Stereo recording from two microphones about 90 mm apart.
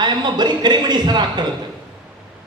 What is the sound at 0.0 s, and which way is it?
A man's voice, 55° right (ahead or behind).